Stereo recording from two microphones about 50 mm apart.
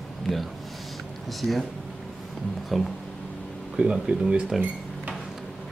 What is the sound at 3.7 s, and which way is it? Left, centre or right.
Speech, right.